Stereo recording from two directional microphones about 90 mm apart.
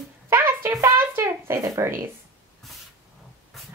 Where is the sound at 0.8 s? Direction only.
35° right (ahead or behind).